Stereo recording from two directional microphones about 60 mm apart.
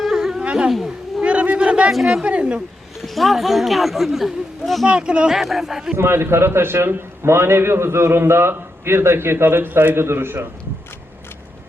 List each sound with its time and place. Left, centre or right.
0.1 s dog: centre
0.4 s a sound: centre
1.9 s speech: centre
2.2 s a woman's voice: centre
3.2 s speech: centre
4.9 s speech: centre
5.3 s speech: centre
6.0 s a man's voice: right